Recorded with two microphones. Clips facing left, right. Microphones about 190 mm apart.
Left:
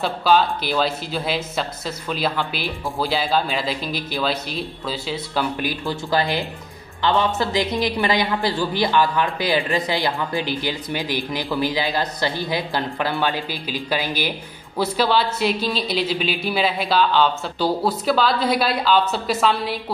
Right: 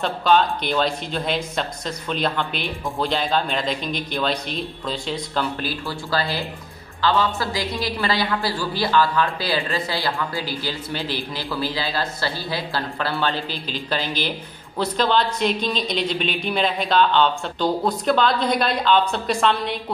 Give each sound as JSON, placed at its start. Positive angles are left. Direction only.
{"t": 0.0, "sound": "a man's voice", "side_deg": 5}